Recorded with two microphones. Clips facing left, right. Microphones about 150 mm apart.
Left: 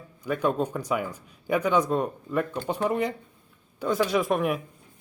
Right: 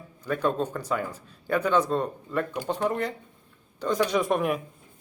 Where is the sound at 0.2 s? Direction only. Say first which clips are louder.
Left 1 dB; 10° left (ahead or behind).